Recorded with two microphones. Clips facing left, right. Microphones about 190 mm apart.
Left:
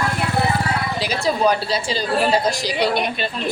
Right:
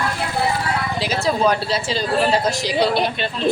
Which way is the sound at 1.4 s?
Centre (ahead or behind).